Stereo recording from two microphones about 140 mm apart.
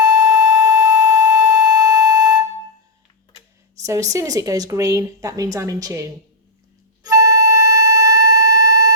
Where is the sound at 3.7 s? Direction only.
25° right (ahead or behind).